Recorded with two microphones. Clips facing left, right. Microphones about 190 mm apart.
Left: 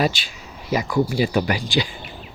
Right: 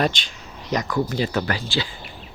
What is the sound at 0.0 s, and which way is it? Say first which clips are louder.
Speech: left 1 dB; 5° left (ahead or behind).